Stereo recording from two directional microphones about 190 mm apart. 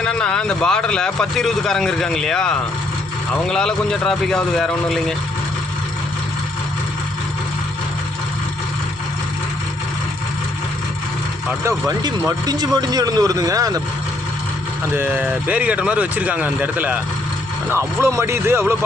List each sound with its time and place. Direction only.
0.0 s speech: 5° left (ahead or behind)
12.5 s speech: 20° right (ahead or behind)
14.9 s speech: 10° right (ahead or behind)